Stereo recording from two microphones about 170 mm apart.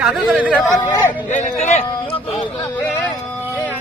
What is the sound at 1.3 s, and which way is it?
Speech, 45° left (ahead or behind).